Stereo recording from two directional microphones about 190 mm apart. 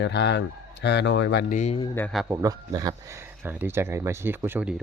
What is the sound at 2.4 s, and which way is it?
Speech, 20° right (ahead or behind).